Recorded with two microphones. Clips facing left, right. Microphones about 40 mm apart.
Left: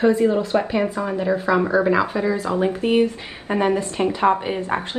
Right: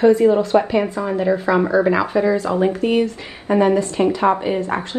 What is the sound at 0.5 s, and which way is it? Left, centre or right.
Speech, centre.